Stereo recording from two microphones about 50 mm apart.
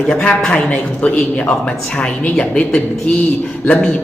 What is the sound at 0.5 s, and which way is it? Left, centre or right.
Speech, left.